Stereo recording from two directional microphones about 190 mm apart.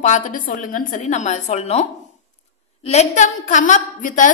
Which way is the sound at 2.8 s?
35° left (ahead or behind).